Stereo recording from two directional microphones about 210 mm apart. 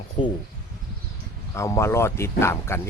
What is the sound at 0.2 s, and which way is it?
Speech, 25° left (ahead or behind).